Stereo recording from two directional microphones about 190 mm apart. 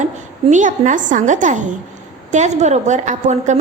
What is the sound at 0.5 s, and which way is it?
A woman's voice, 40° right (ahead or behind).